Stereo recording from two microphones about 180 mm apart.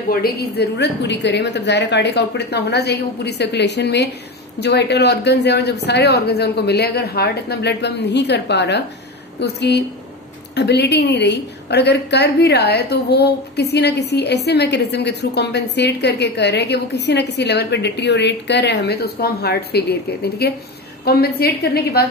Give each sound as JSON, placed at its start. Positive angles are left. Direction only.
{"t": 0.1, "sound": "a woman's voice", "side_deg": 60}